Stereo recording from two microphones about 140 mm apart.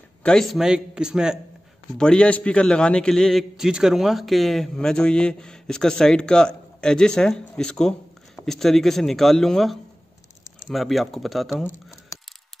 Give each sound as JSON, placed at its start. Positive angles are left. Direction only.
{"t": 0.2, "sound": "a man's voice", "side_deg": 5}
{"t": 2.0, "sound": "a man's voice", "side_deg": 5}
{"t": 11.5, "sound": "a sound", "side_deg": 20}